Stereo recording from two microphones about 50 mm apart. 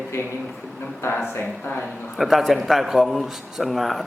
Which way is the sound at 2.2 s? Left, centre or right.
Centre.